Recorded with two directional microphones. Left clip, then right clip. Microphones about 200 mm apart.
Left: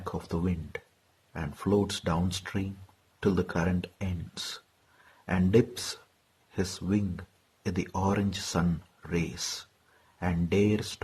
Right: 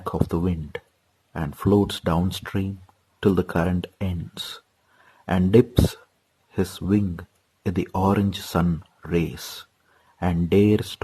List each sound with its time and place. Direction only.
0.0 s speech: 30° right (ahead or behind)